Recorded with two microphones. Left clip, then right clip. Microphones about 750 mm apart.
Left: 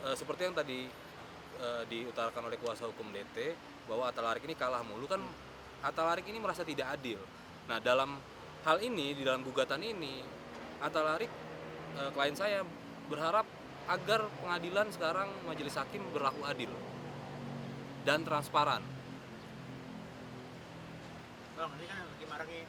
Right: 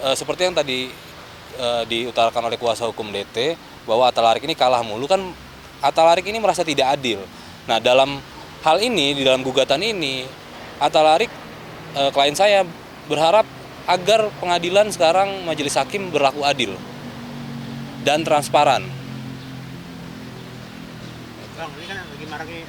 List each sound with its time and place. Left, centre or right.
0.0 s speech: right
18.0 s speech: right